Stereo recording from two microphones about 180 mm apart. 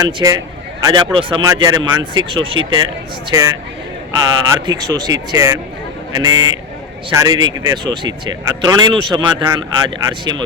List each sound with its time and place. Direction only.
0.0 s speech: 20° right (ahead or behind)
4.6 s speech: 20° right (ahead or behind)